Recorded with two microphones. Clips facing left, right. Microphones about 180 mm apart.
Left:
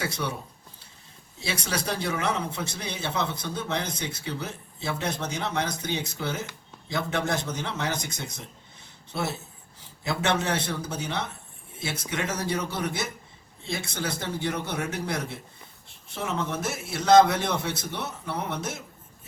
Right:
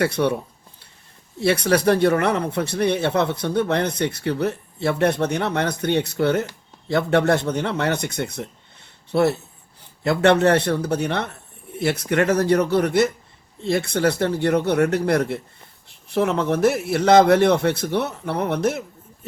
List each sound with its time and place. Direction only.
0.0 s speech: 65° right (ahead or behind)
1.4 s speech: 60° right (ahead or behind)